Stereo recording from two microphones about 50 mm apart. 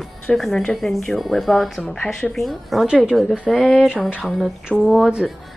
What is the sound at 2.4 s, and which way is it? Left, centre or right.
Speech, centre.